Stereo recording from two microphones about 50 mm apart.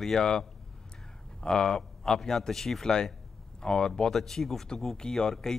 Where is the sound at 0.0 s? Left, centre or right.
Centre.